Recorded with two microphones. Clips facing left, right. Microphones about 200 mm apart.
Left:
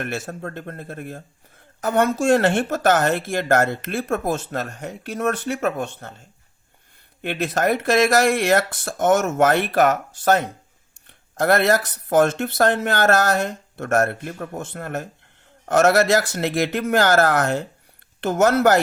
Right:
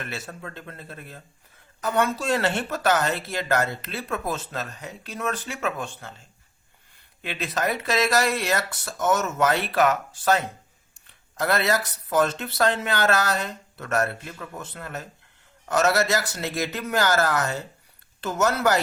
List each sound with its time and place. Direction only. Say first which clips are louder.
0.0 s speech: left 7 dB; 50° left (ahead or behind)
7.2 s speech: left 6 dB; 50° left (ahead or behind)